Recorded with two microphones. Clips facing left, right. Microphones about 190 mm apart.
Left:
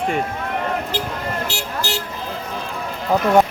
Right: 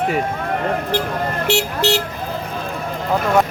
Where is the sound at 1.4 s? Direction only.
65° right (ahead or behind).